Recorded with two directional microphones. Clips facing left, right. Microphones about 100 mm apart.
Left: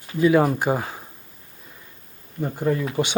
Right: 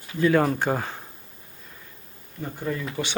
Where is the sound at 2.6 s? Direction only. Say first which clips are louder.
Left 7 dB; 35° left (ahead or behind).